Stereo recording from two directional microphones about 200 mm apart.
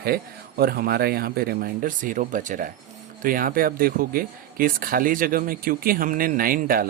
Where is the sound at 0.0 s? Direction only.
50° right (ahead or behind).